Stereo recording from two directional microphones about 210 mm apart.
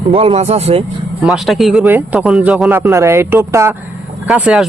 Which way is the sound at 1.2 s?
Centre (ahead or behind).